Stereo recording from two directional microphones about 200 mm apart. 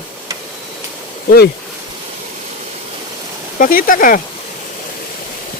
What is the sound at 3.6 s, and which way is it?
Speech, 45° left (ahead or behind).